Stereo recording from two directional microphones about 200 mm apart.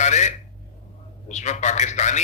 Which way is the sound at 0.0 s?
35° left (ahead or behind).